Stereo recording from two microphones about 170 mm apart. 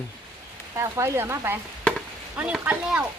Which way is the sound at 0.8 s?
15° right (ahead or behind).